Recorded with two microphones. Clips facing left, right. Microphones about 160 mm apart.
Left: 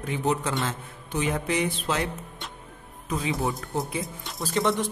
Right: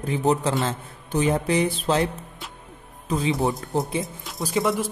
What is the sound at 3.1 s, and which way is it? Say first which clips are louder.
Speech: right 4 dB; 30° right (ahead or behind).